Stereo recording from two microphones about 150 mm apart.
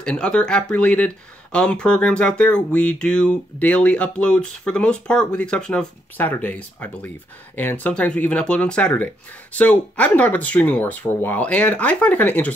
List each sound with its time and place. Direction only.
0.0 s speech: 5° left (ahead or behind)